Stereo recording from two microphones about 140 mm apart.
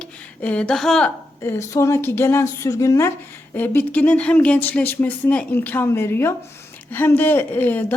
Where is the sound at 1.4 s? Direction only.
20° left (ahead or behind).